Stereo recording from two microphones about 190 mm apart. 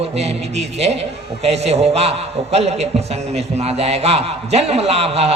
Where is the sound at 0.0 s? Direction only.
35° right (ahead or behind).